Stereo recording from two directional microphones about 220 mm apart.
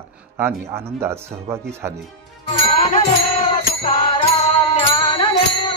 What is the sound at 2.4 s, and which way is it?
Ding, 25° left (ahead or behind).